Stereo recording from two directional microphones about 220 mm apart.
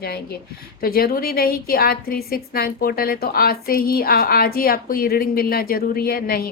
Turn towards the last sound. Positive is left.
turn(degrees=40)  # may be behind; listen again after turning